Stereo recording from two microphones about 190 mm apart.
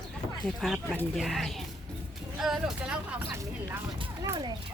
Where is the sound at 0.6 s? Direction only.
Centre (ahead or behind).